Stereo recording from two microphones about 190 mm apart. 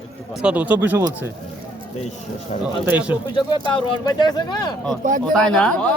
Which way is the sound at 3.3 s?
25° left (ahead or behind).